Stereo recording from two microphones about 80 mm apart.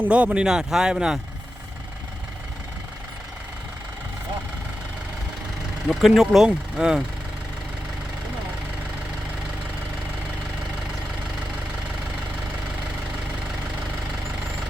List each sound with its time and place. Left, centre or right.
0.0 s speech: centre
5.9 s speech: centre